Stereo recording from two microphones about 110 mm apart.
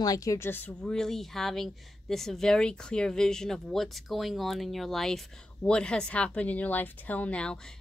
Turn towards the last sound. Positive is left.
turn(degrees=10)  # may be behind; listen again after turning